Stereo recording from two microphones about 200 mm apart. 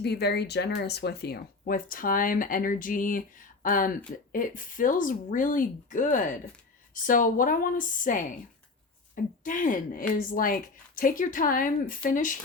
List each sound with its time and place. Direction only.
0.0 s speech: 55° left (ahead or behind)
9.4 s speech: 40° left (ahead or behind)